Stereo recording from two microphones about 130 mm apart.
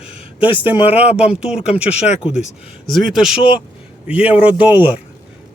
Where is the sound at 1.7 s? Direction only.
50° left (ahead or behind).